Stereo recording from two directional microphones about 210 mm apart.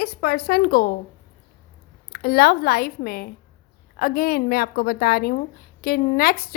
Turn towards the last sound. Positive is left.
turn(degrees=45)  # may be behind; listen again after turning